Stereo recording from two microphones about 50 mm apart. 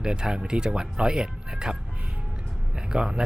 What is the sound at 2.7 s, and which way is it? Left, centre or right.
Speech, centre.